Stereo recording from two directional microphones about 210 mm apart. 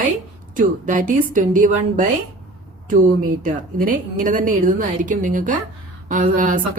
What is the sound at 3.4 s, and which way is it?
A woman's voice, 40° right (ahead or behind).